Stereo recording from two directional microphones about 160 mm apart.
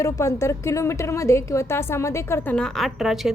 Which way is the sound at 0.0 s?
20° left (ahead or behind).